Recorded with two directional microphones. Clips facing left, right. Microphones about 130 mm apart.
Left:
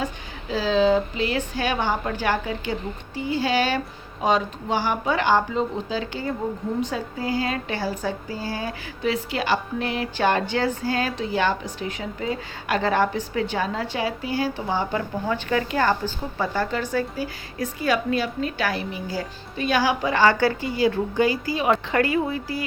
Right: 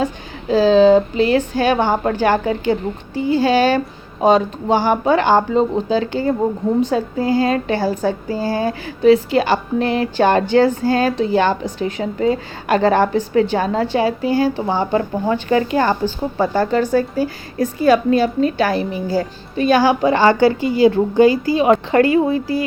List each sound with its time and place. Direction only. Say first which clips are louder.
0.5 s a sound: right 9 dB; 40° right (ahead or behind)
1.2 s a woman's voice: right 9 dB; 40° right (ahead or behind)
3.2 s a woman's voice: right 8 dB; 35° right (ahead or behind)
16.4 s a woman's voice: right 8 dB; 35° right (ahead or behind)